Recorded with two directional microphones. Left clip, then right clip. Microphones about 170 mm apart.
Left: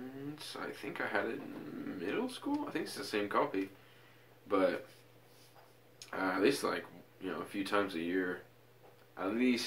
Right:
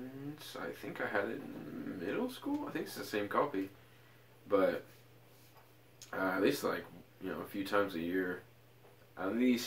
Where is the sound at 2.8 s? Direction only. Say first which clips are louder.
Left 1 dB; 15° right (ahead or behind).